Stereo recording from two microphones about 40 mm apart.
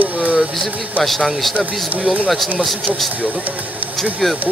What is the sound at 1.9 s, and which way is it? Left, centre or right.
Speech, right.